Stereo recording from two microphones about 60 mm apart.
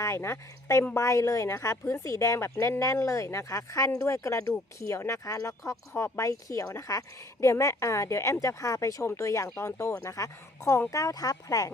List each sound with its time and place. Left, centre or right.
0.0 s a woman's voice: left
10.9 s speech: left